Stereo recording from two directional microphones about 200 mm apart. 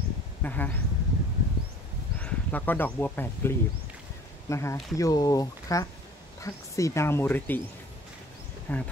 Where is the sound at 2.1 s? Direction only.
10° left (ahead or behind).